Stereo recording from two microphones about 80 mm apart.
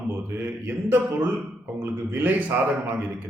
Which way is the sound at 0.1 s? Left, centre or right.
Right.